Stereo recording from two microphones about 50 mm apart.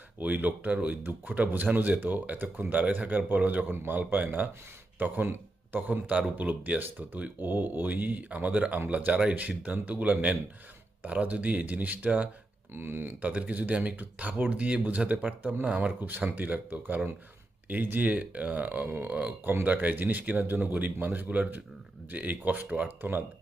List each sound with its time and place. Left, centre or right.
0.2 s speech: right
1.0 s speech: right
12.7 s speech: right
13.2 s speech: right